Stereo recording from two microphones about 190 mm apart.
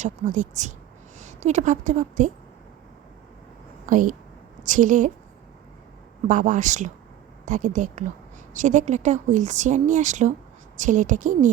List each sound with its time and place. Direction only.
0.0 s speech: 40° right (ahead or behind)
3.8 s a woman's voice: 45° right (ahead or behind)
6.2 s a woman's voice: 45° right (ahead or behind)